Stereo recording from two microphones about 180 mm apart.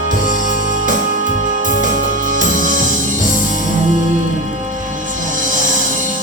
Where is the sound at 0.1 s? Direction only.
45° right (ahead or behind).